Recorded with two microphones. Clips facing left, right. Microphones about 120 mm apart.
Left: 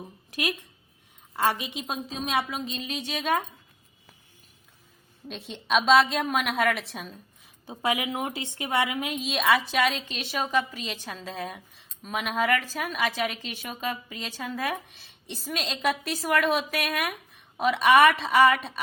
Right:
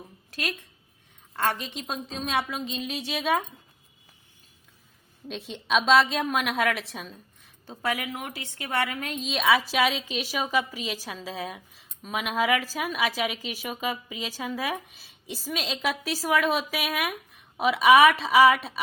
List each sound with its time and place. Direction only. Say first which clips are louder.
0.0 s a woman's voice: left 3 dB; 15° left (ahead or behind); by 3.4 s centre (ahead or behind)
5.3 s a woman's voice: even; centre (ahead or behind)
7.7 s a woman's voice: left 2 dB; 15° left (ahead or behind); by 18.8 s centre (ahead or behind)